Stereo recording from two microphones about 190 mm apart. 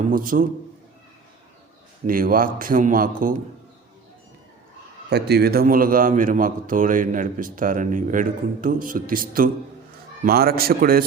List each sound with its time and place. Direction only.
0.1 s a man's voice: 45° right (ahead or behind)
2.0 s a man's voice: 50° right (ahead or behind)
5.0 s a man's voice: 60° right (ahead or behind)